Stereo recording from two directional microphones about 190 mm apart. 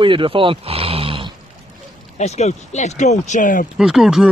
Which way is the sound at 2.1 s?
35° left (ahead or behind).